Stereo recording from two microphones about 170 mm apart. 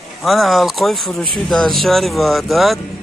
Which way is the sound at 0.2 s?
Centre (ahead or behind).